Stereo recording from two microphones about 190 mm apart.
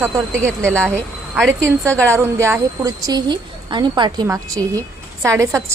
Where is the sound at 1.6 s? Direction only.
15° right (ahead or behind).